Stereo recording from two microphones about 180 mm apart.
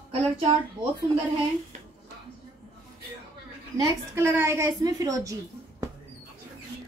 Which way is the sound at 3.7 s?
15° right (ahead or behind).